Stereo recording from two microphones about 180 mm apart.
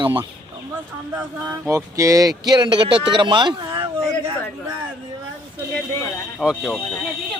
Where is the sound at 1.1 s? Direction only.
15° right (ahead or behind).